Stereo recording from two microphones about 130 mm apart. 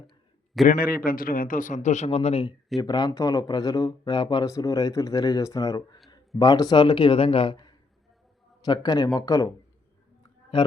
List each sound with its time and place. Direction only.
0.6 s a man's voice: centre (ahead or behind)
1.0 s speech: 90° left; by 2.6 s 45° left (ahead or behind)
2.8 s speech: 30° left (ahead or behind)
7.5 s a sound: 35° left (ahead or behind)
8.6 s speech: 30° left (ahead or behind)